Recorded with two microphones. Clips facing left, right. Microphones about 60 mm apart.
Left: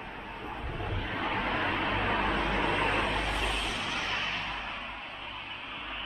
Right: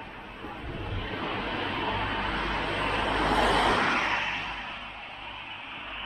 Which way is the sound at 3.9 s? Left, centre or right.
Right.